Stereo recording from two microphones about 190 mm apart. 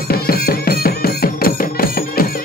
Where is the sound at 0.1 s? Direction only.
55° left (ahead or behind).